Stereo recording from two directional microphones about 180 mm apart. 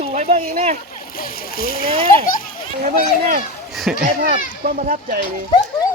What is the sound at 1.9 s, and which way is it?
Speech, 30° right (ahead or behind).